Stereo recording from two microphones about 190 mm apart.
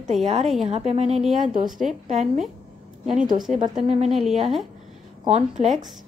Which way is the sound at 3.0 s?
Centre (ahead or behind).